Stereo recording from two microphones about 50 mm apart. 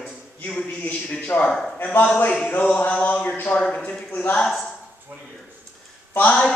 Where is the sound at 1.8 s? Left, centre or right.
Left.